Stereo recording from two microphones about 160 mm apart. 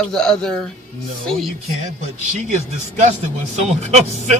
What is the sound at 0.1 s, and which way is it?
Speech, 5° left (ahead or behind).